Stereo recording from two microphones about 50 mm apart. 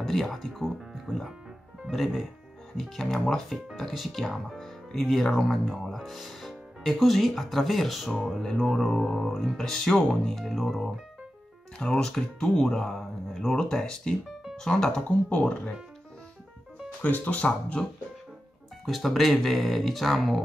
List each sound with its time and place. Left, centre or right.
0.0 s speech: centre
9.6 s speech: centre
11.8 s speech: centre
17.0 s speech: left
18.9 s speech: centre